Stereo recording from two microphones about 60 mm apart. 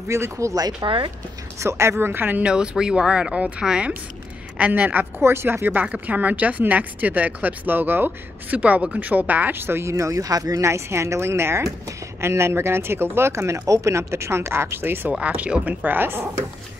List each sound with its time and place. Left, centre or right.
0.1 s speech: right
2.4 s speech: centre
4.6 s speech: right
5.2 s speech: right
5.9 s speech: right
13.3 s speech: right
15.0 s speech: right